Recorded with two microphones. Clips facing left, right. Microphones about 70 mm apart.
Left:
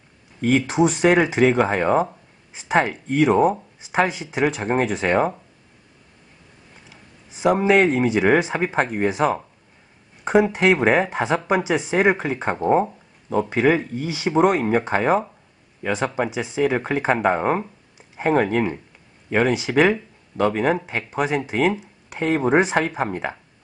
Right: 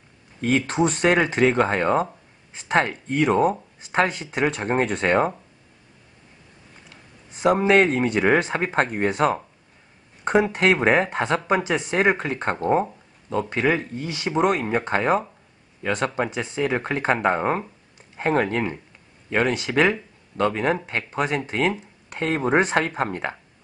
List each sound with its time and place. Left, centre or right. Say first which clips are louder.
0.4 s speech: left 3 dB; centre
6.9 s a sound: even; centre
8.0 s speech: left 2 dB; centre